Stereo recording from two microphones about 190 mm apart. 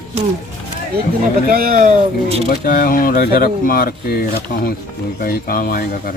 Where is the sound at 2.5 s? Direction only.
45° left (ahead or behind).